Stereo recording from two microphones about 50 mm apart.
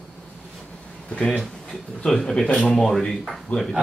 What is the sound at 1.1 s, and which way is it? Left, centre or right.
Speech, left.